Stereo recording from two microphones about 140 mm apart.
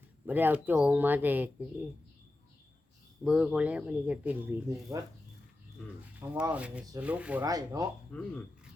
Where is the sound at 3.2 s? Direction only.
5° right (ahead or behind).